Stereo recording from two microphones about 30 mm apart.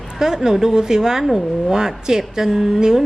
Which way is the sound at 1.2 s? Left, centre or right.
Centre.